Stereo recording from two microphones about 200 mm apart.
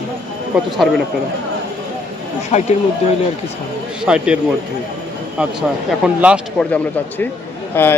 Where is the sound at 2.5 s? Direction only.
35° left (ahead or behind).